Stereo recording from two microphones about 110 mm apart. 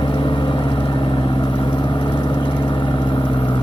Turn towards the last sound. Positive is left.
turn(degrees=50)  # may be behind; listen again after turning